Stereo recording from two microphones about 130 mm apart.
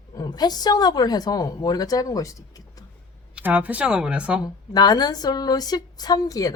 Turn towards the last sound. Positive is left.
turn(degrees=30)  # may be behind; listen again after turning